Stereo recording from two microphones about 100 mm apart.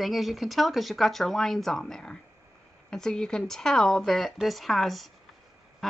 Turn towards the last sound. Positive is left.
turn(degrees=0)  # may be behind; listen again after turning